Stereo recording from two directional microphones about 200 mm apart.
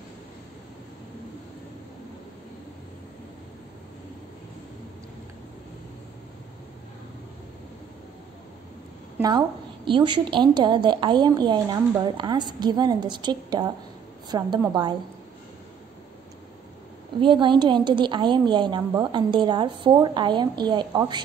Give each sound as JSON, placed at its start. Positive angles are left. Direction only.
{"t": 9.8, "sound": "a woman's voice", "side_deg": -25}
{"t": 17.2, "sound": "a woman's voice", "side_deg": -25}